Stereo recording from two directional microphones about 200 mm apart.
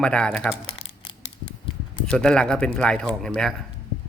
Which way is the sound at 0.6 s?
30° left (ahead or behind).